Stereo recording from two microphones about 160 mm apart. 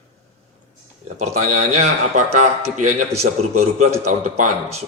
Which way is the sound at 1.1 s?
45° right (ahead or behind).